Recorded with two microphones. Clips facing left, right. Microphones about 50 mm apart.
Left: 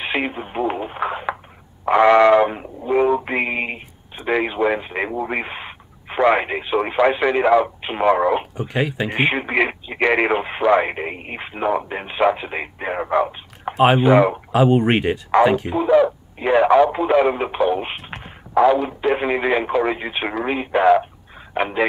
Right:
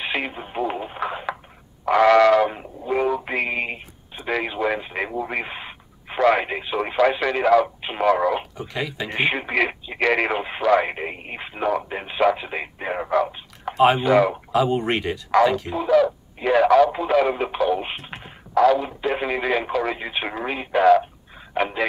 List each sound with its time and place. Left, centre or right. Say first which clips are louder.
0.0 s speech: left 3 dB; centre
1.9 s a sound: left 2 dB; left
2.5 s speech: left 5 dB; centre; by 9.1 s left
9.1 s speech: left 1 dB; centre
14.5 s speech: left 5 dB; left